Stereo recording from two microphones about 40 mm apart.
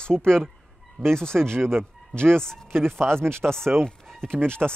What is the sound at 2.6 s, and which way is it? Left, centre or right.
Speech, right.